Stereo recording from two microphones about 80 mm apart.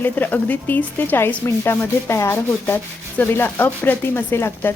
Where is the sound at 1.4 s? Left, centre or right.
Left.